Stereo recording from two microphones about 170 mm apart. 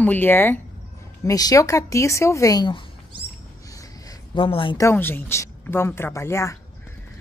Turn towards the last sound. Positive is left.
turn(degrees=15)  # may be behind; listen again after turning